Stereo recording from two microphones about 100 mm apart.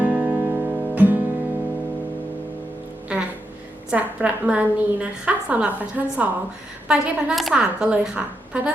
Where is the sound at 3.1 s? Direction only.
10° right (ahead or behind).